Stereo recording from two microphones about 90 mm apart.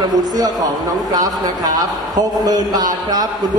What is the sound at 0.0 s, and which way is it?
A man's voice, 50° right (ahead or behind).